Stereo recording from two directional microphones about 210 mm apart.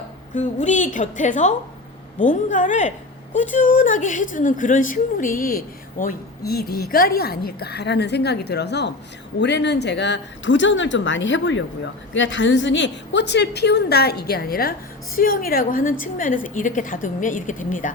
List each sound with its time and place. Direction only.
0.3 s a woman's voice: 35° left (ahead or behind)